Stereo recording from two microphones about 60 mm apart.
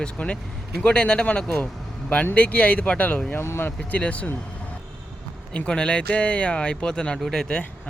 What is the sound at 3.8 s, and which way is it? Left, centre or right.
Speech, centre.